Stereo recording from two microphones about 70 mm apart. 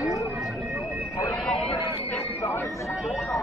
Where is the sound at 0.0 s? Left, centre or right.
Left.